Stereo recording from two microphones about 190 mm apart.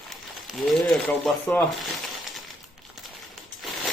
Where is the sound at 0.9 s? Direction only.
5° left (ahead or behind).